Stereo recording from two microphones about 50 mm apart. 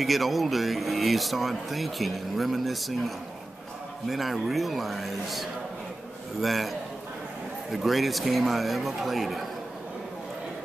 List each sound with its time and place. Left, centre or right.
0.0 s speech: centre
4.1 s speech: centre
7.7 s speech: centre